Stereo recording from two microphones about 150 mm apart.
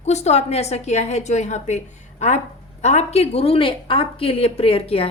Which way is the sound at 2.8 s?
50° left (ahead or behind).